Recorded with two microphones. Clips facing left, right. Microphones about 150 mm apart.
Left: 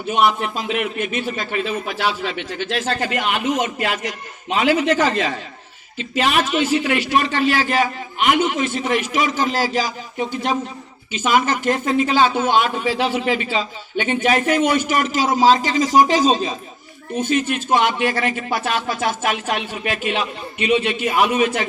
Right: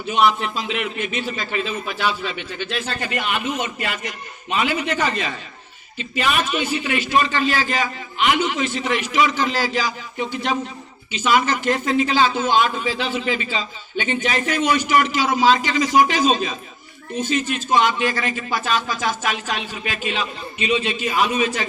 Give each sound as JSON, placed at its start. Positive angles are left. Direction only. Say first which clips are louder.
{"t": 0.1, "sound": "a man's voice", "louder": "even", "side_deg": 50}
{"t": 17.2, "sound": "speech", "louder": "left 3 dB", "side_deg": 55}